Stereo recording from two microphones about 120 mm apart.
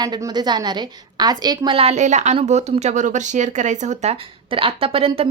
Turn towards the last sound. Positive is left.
turn(degrees=-50)  # may be behind; listen again after turning